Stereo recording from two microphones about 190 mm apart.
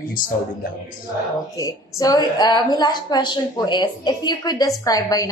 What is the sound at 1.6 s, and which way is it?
A woman's voice, 20° left (ahead or behind).